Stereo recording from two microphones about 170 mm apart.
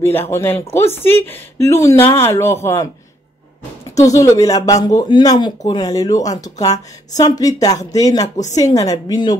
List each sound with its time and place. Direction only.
0.0 s speech: 15° left (ahead or behind)
3.9 s speech: 20° left (ahead or behind)